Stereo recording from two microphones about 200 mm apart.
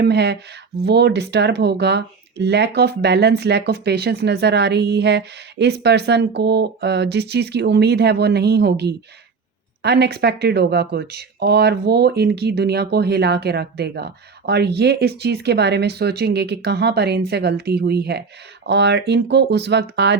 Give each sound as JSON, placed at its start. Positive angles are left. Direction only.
{"t": 0.0, "sound": "speech", "side_deg": -55}